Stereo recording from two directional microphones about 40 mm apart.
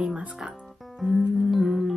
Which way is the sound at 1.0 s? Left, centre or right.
Centre.